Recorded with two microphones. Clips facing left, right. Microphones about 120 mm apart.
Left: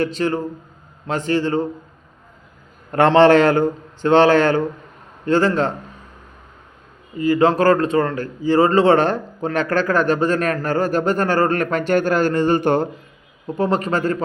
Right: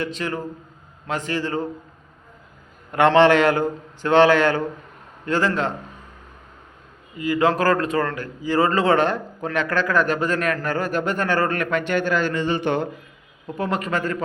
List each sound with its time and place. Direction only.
0.0 s a man's voice: 35° left (ahead or behind)
2.9 s a man's voice: 35° left (ahead or behind)
7.2 s a man's voice: 30° left (ahead or behind)
13.5 s a man's voice: 30° left (ahead or behind)